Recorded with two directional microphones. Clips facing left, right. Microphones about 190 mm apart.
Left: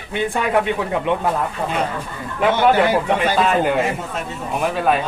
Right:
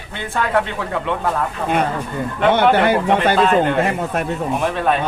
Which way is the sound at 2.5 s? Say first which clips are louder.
Right 1 dB; 60° right (ahead or behind).